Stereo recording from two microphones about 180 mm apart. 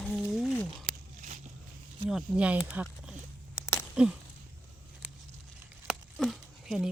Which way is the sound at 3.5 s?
15° left (ahead or behind).